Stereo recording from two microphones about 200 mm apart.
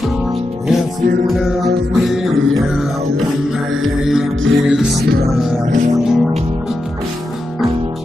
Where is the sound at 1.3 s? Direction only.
Centre (ahead or behind).